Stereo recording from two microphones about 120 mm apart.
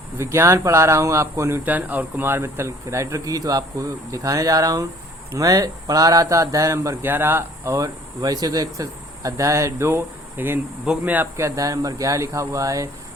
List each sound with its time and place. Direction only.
0.2 s speech: 20° right (ahead or behind)